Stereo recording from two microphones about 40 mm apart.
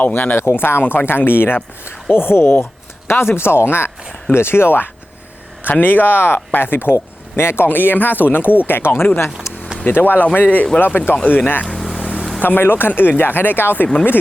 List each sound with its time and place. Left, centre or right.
0.0 s speech: left
3.1 s speech: left
5.8 s speech: left
7.3 s speech: left
9.8 s speech: left
11.6 s vehicle: centre
12.4 s speech: left